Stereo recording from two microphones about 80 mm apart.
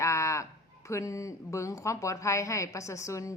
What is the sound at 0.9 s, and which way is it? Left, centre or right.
A woman's voice, left.